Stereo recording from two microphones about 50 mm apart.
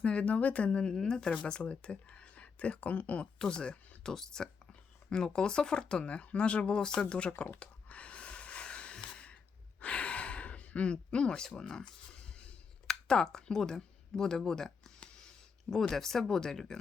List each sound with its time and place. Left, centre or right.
0.0 s speech: left
3.3 s speech: centre
7.6 s a sound: left
9.8 s gasp: left
12.9 s speech: centre